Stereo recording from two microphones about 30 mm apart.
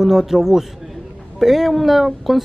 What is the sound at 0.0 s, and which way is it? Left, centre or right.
Speech, centre.